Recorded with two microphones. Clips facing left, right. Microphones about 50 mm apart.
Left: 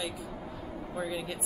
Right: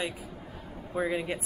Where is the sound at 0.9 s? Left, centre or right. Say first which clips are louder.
Right 6 dB; right.